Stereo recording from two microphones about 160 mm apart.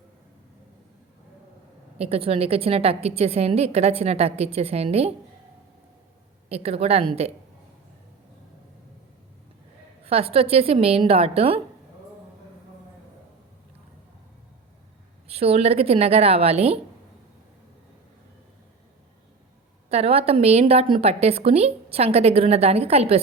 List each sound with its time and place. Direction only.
2.0 s a woman's voice: 35° right (ahead or behind)
6.5 s a woman's voice: 40° right (ahead or behind)
10.1 s a woman's voice: 40° right (ahead or behind)
15.3 s a woman's voice: 40° right (ahead or behind)
19.9 s a woman's voice: 40° right (ahead or behind)